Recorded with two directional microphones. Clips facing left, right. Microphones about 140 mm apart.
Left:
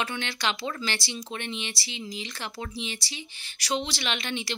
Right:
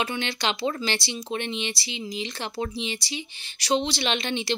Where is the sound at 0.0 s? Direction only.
20° right (ahead or behind).